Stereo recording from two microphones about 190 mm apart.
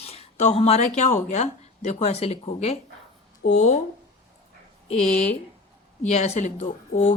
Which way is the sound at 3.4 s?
55° left (ahead or behind).